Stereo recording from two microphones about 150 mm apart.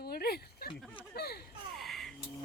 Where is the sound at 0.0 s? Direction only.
90° left.